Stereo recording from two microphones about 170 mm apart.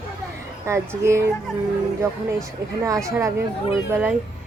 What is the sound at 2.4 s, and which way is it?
A woman's voice, 20° right (ahead or behind).